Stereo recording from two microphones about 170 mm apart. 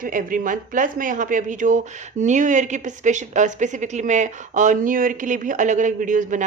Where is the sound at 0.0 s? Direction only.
55° right (ahead or behind).